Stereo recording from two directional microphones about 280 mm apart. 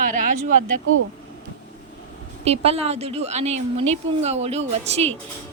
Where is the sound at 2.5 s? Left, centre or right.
Right.